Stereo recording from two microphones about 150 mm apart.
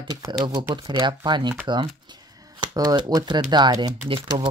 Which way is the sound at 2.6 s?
30° right (ahead or behind).